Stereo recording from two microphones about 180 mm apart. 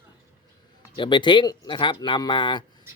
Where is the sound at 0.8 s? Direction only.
25° left (ahead or behind).